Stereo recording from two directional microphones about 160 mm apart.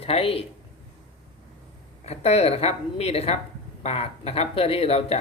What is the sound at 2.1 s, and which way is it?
Speech, 40° left (ahead or behind).